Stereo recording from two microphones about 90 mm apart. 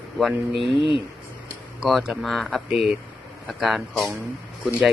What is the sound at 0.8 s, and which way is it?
Speech, 75° left (ahead or behind).